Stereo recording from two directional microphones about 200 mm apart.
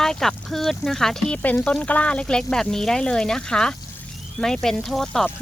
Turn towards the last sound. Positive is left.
turn(degrees=0)  # may be behind; listen again after turning